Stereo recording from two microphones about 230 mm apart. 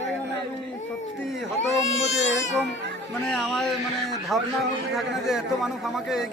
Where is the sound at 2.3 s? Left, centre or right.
Left.